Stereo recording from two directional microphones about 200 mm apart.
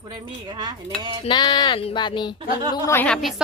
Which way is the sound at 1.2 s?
20° left (ahead or behind).